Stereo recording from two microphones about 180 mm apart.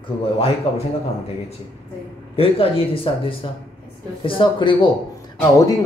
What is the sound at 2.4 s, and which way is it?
Speech, 30° left (ahead or behind).